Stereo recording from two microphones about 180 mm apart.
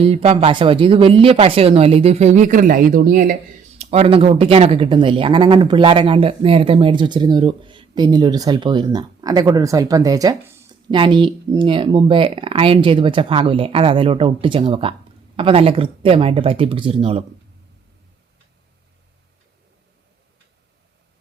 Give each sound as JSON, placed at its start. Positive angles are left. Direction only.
{"t": 0.0, "sound": "speech", "side_deg": -35}
{"t": 3.8, "sound": "speech", "side_deg": -35}